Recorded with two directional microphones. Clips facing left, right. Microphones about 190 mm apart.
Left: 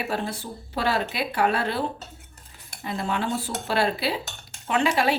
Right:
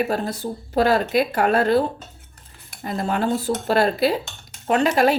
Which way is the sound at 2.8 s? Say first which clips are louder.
Right 5 dB; 45° right (ahead or behind).